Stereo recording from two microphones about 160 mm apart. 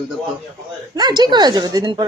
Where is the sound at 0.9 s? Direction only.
25° right (ahead or behind).